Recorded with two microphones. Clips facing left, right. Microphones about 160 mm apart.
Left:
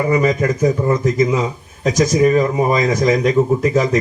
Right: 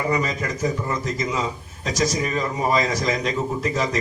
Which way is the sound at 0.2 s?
45° left (ahead or behind).